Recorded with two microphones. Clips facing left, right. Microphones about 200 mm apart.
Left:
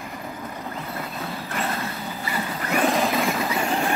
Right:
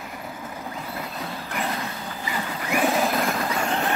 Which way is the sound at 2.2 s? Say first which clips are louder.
Left 1 dB; 10° right (ahead or behind).